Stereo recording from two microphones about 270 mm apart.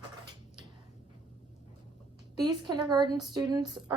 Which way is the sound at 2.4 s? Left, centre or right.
Centre.